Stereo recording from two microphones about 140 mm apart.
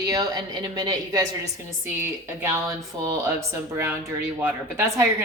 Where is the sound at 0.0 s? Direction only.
25° right (ahead or behind).